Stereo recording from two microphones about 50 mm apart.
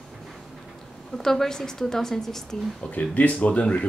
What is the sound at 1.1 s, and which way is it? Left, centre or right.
Speech, centre.